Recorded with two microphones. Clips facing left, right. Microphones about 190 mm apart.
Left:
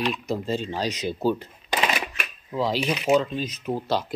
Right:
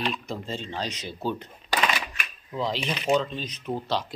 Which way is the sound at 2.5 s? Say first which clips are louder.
Left 4 dB; 5° left (ahead or behind).